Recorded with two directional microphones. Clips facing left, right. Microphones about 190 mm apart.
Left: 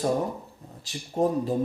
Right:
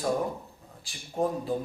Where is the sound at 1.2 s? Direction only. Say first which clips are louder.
Left 4 dB; 25° left (ahead or behind).